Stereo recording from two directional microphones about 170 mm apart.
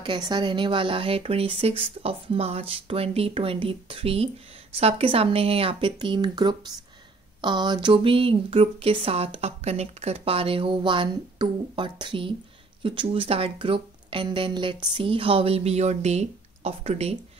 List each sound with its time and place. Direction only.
0.0 s speech: 25° right (ahead or behind)